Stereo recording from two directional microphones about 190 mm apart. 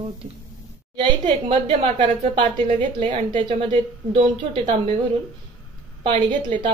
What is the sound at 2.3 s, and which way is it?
A woman's voice, 25° right (ahead or behind).